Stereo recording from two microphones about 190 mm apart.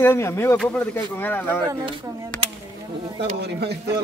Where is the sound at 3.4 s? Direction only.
60° right (ahead or behind).